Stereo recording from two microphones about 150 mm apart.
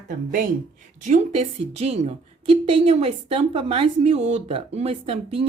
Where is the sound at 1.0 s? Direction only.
50° right (ahead or behind).